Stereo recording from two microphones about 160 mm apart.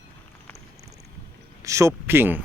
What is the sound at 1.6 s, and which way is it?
Speech, 20° right (ahead or behind).